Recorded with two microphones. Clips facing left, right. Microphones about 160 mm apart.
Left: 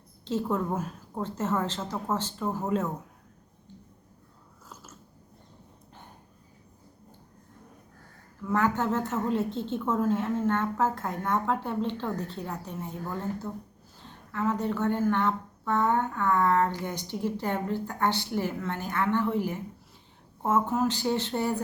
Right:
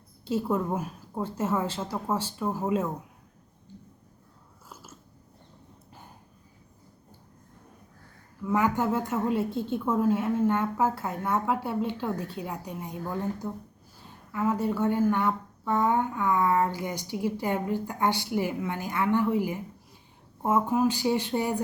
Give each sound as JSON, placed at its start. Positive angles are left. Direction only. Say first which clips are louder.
{"t": 0.3, "sound": "speech", "louder": "right 1 dB", "side_deg": -10}
{"t": 4.7, "sound": "biting", "louder": "right 1 dB", "side_deg": -10}
{"t": 8.4, "sound": "speech", "louder": "right 1 dB", "side_deg": -10}